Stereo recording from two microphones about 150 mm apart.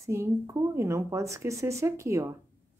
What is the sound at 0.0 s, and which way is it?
Speech, 20° right (ahead or behind).